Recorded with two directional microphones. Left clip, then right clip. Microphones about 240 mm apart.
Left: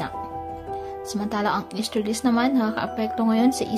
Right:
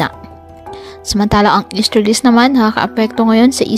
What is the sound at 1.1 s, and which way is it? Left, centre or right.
Speech, right.